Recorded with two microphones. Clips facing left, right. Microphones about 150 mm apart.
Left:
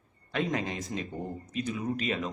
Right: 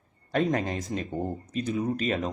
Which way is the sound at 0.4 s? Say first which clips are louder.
Right 4 dB; 50° right (ahead or behind).